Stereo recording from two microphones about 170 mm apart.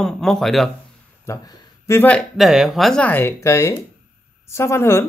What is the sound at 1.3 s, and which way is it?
Speech, 15° left (ahead or behind).